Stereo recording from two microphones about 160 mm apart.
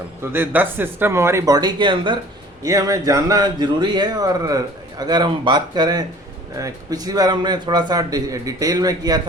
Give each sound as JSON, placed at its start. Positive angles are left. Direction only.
{"t": 0.3, "sound": "speech", "side_deg": -10}